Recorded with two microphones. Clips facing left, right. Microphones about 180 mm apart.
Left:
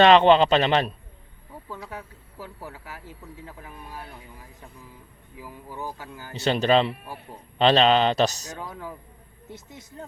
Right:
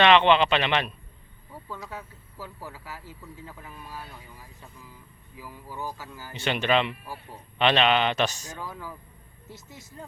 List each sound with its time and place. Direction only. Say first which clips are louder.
0.0 s a man's voice: left 4 dB; 40° left (ahead or behind)
1.9 s speech: left 1 dB; 15° left (ahead or behind)
5.4 s speech: left 1 dB; 20° left (ahead or behind)
6.3 s a man's voice: left 4 dB; 35° left (ahead or behind)
8.5 s speech: left 2 dB; 20° left (ahead or behind)